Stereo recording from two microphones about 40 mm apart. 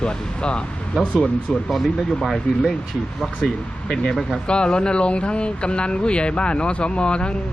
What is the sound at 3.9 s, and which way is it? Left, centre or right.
Speech, left.